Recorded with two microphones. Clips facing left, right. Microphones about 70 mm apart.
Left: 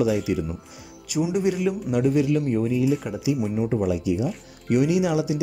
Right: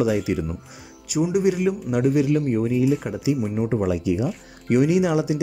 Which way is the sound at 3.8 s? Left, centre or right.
Right.